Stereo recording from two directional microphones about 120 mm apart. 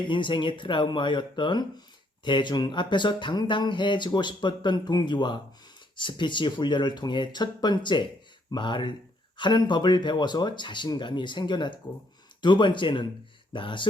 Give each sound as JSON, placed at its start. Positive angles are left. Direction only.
{"t": 0.0, "sound": "speech", "side_deg": 40}